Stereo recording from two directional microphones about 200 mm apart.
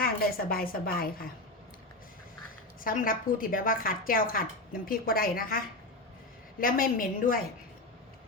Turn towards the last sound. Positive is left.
turn(degrees=45)  # may be behind; listen again after turning